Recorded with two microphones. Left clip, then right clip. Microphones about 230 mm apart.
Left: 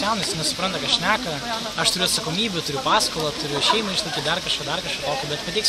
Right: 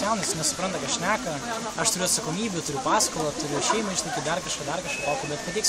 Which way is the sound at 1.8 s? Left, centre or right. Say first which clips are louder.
Left 6 dB; centre.